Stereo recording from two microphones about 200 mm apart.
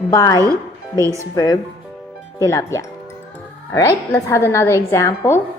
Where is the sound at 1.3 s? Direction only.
20° left (ahead or behind).